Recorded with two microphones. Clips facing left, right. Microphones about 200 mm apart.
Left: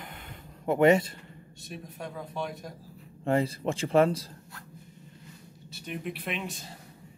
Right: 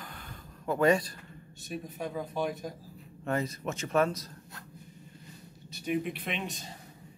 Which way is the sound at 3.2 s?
30° left (ahead or behind).